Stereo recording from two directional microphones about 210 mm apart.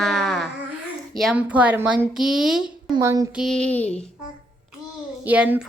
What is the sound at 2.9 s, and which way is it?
Speech, 15° right (ahead or behind).